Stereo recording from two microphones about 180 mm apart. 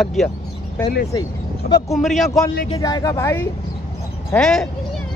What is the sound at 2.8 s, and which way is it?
Speech, 20° left (ahead or behind).